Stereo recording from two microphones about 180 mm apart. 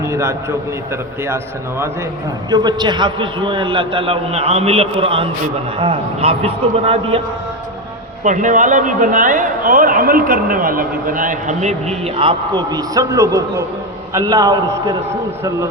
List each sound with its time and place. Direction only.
0.0 s a man's voice: 15° right (ahead or behind)
2.5 s a man's voice: 25° right (ahead or behind)
8.2 s a man's voice: 45° right (ahead or behind); by 15.5 s 15° right (ahead or behind)